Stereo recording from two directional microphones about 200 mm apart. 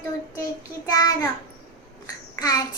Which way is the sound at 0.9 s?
15° left (ahead or behind).